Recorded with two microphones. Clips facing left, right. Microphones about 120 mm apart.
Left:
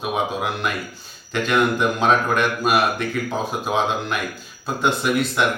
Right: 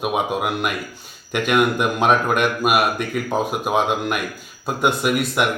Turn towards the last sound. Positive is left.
turn(degrees=-10)  # may be behind; listen again after turning